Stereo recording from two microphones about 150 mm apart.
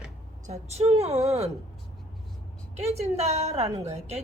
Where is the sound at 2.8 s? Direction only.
45° right (ahead or behind).